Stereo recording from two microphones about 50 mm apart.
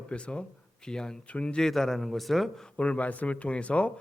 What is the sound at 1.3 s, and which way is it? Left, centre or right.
Speech, left.